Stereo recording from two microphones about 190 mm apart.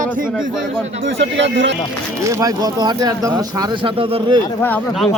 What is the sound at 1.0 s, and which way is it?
Speech, 70° right (ahead or behind).